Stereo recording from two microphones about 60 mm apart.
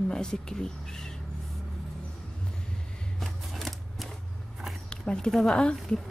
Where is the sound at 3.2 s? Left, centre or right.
Centre.